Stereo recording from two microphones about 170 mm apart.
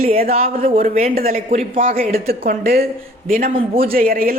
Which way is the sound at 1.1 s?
60° right (ahead or behind).